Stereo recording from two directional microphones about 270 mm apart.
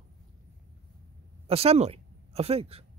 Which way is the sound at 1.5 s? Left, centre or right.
Right.